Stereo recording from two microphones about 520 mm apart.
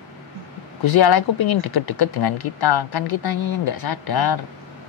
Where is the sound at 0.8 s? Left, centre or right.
Left.